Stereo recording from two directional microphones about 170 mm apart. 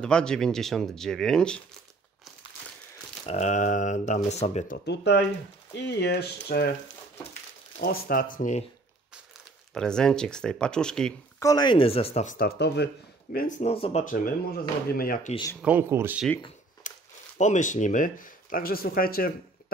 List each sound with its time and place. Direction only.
0.0 s speech: 5° left (ahead or behind)
3.3 s speech: 45° left (ahead or behind)
4.8 s speech: 85° left; by 6.7 s 70° left (ahead or behind)
7.8 s speech: 60° left (ahead or behind)
9.8 s speech: 5° left (ahead or behind)
11.3 s speech: 20° left (ahead or behind); by 12.4 s 40° left (ahead or behind)
12.4 s speech: 70° left (ahead or behind); by 14.0 s 35° left (ahead or behind)
14.0 s speech: 55° left (ahead or behind)
15.6 s speech: 10° right (ahead or behind)
16.8 s a sound: 50° left (ahead or behind)
17.4 s speech: 45° left (ahead or behind)